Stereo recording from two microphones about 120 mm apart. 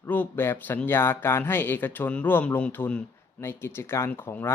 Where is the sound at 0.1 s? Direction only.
15° left (ahead or behind).